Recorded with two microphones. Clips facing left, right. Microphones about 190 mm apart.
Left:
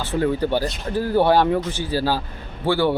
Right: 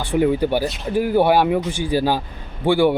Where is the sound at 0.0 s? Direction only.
15° right (ahead or behind).